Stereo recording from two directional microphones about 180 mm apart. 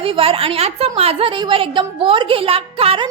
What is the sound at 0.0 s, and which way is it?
A woman's voice, 30° right (ahead or behind).